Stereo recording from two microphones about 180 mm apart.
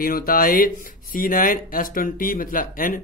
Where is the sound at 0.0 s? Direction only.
55° left (ahead or behind).